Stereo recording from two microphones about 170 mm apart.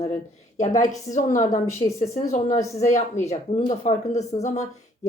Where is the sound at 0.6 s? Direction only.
45° left (ahead or behind).